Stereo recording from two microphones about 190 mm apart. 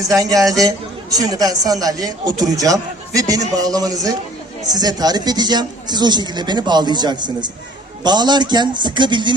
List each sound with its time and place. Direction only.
0.1 s a man's voice: 20° right (ahead or behind)